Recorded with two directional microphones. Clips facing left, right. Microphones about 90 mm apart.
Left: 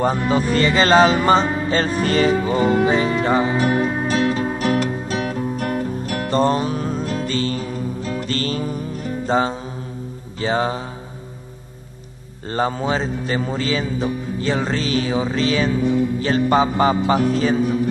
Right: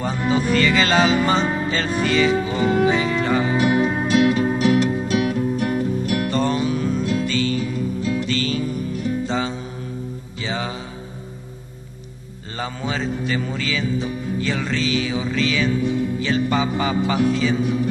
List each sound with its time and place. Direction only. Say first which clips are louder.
0.0 s music: left 3 dB; 40° left (ahead or behind)
10.4 s speech: left 7 dB; 40° left (ahead or behind)
12.4 s speech: left 7 dB; 40° left (ahead or behind)